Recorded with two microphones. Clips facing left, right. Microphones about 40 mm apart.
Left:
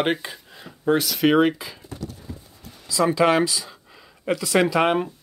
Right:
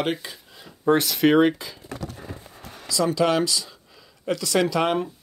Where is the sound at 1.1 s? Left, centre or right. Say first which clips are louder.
Left 1 dB; centre.